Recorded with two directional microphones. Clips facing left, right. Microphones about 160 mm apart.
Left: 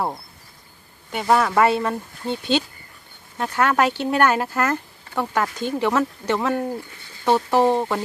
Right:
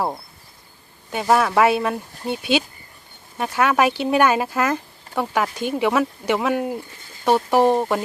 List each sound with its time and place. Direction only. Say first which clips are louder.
1.1 s speech: right 1 dB; 5° right (ahead or behind)